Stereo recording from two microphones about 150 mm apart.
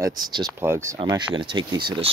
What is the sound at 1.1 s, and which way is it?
Speech, 30° right (ahead or behind).